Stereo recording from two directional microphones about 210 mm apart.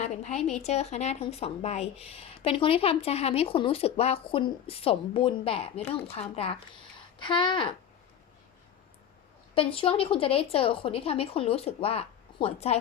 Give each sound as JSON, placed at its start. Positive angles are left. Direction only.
{"t": 0.0, "sound": "a woman's voice", "side_deg": 35}
{"t": 9.6, "sound": "a woman's voice", "side_deg": 25}